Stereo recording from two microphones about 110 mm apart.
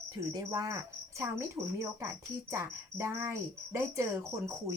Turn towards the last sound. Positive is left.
turn(degrees=-30)  # may be behind; listen again after turning